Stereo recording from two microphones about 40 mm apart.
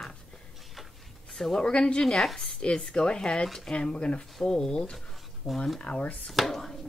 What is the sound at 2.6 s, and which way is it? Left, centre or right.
Speech, left.